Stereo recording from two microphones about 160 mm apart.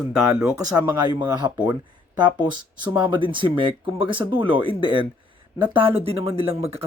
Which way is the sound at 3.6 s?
30° right (ahead or behind).